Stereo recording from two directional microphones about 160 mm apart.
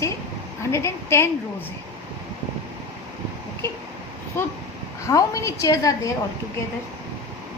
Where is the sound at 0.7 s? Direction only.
15° left (ahead or behind).